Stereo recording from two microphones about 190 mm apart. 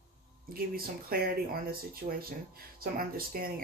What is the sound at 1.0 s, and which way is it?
Speech, 50° right (ahead or behind).